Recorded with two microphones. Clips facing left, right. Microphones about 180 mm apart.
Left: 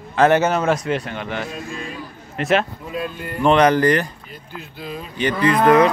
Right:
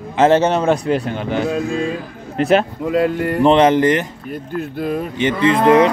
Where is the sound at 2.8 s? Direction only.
75° right (ahead or behind).